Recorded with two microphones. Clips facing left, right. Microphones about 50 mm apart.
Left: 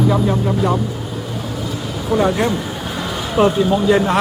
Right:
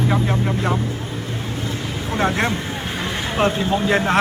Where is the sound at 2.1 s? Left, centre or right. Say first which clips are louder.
Left 4 dB; right.